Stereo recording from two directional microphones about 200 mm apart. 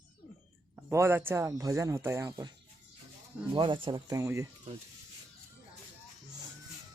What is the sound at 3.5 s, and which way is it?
Speech, 25° right (ahead or behind).